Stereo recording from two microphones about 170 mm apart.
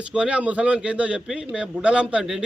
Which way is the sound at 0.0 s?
5° right (ahead or behind).